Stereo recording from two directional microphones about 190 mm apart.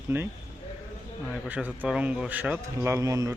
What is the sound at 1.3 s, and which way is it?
Speech, 5° right (ahead or behind).